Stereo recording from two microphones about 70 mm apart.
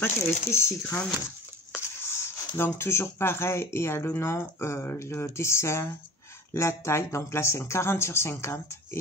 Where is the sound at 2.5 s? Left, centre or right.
Left.